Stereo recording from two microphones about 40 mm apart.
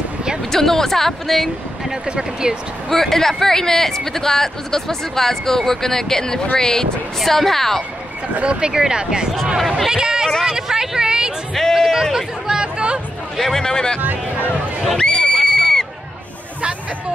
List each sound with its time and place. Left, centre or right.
0.5 s speech: centre
2.0 s speech: centre
2.9 s speech: centre
8.5 s speech: centre
11.5 s speech: centre
12.4 s speech: centre
13.4 s speech: centre
15.0 s neigh: centre